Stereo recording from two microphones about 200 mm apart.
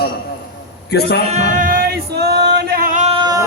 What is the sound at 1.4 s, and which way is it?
Male singing, 40° right (ahead or behind).